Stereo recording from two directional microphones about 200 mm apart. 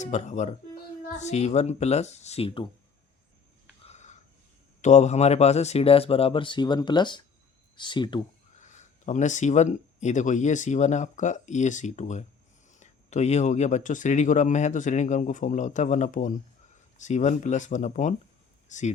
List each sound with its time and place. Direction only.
0.0 s speech: 35° left (ahead or behind)
3.8 s a sound: 35° left (ahead or behind)
4.8 s speech: 35° left (ahead or behind)
8.5 s speech: 35° left (ahead or behind)